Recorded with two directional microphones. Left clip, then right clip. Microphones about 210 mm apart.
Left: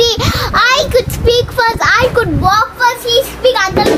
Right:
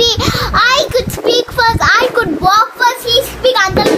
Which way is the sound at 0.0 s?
10° left (ahead or behind).